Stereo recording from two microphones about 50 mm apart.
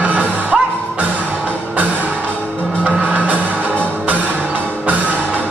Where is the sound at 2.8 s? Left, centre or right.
Right.